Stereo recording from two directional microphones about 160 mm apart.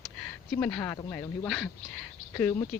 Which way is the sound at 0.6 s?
15° left (ahead or behind).